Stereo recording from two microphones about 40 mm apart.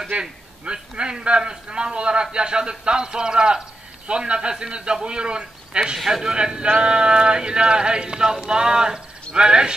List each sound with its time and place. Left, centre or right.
0.2 s a man's voice: right
6.0 s a man's voice: centre